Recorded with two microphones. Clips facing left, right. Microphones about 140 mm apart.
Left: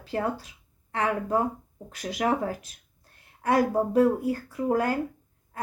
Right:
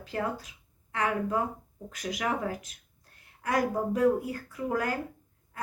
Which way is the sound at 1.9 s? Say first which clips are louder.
Left 5 dB; 35° left (ahead or behind).